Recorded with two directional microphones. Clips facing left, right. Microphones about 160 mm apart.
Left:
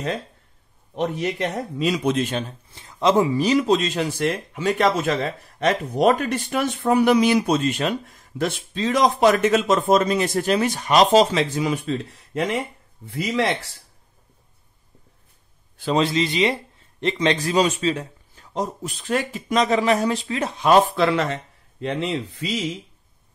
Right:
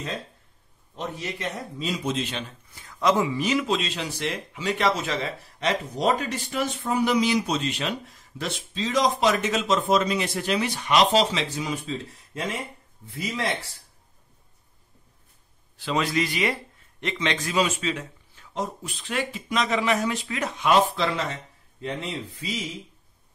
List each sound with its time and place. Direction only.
0.9 s speech: 65° left (ahead or behind)
1.8 s a man's voice: 80° left
2.1 s speech: 50° left (ahead or behind)
2.7 s speech: 25° left (ahead or behind); by 13.7 s 70° left (ahead or behind)
15.8 s a man's voice: 30° left (ahead or behind)
17.0 s a man's voice: 35° left (ahead or behind)
20.9 s speech: 60° left (ahead or behind); by 22.5 s 75° left (ahead or behind)